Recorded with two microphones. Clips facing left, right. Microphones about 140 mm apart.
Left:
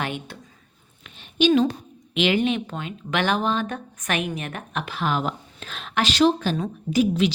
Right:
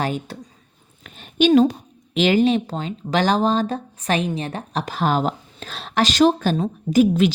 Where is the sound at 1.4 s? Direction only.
50° right (ahead or behind).